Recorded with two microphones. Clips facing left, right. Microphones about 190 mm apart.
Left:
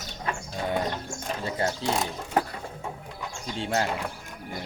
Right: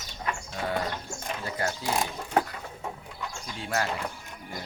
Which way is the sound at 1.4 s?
25° left (ahead or behind).